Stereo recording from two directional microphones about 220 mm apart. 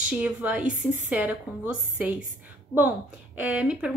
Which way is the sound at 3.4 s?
5° right (ahead or behind).